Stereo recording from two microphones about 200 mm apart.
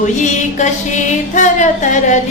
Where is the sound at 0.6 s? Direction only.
40° left (ahead or behind).